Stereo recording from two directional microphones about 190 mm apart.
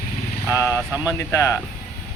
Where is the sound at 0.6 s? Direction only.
15° left (ahead or behind).